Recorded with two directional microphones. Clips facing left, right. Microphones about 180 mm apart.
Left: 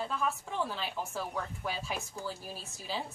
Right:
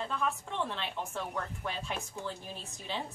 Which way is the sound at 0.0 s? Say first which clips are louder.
Even; 5° left (ahead or behind).